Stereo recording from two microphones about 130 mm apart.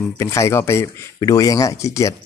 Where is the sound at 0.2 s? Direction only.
25° left (ahead or behind).